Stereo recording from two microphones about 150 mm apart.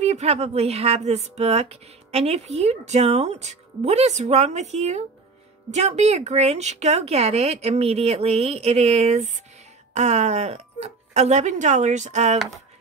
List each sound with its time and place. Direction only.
0.0 s speech: 45° right (ahead or behind)